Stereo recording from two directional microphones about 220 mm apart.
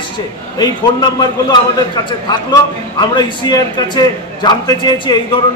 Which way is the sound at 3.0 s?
20° left (ahead or behind).